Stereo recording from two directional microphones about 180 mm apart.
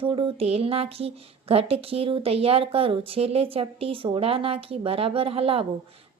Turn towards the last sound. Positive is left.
turn(degrees=-30)  # may be behind; listen again after turning